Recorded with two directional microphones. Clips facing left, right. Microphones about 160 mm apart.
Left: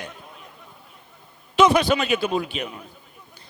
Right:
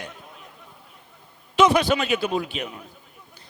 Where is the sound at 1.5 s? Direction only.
25° left (ahead or behind).